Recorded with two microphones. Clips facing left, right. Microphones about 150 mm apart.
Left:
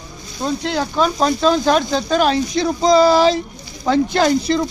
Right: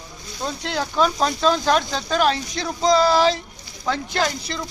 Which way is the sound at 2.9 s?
10° left (ahead or behind).